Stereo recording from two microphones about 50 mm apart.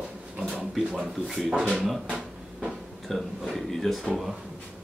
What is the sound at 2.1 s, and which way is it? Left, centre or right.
Speech, centre.